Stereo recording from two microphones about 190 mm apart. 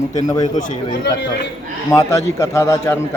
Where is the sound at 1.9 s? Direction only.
15° left (ahead or behind).